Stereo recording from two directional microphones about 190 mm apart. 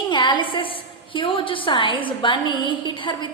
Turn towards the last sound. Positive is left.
turn(degrees=25)  # may be behind; listen again after turning